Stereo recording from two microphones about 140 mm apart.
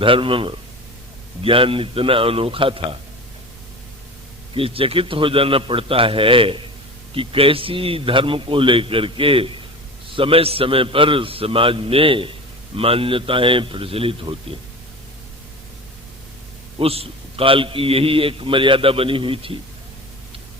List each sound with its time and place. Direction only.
0.0 s a man's voice: 40° right (ahead or behind)
4.5 s a man's voice: 40° right (ahead or behind)
16.8 s a man's voice: 45° right (ahead or behind)